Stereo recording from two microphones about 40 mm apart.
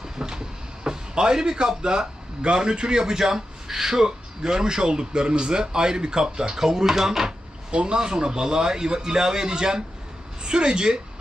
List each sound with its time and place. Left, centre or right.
0.0 s a sound: centre
0.9 s speech: centre
7.7 s a man's voice: right